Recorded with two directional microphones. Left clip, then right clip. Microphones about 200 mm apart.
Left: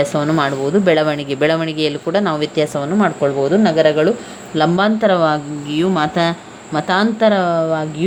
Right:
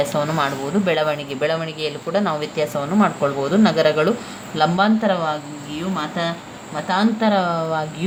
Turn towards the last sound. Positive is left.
turn(degrees=20)  # may be behind; listen again after turning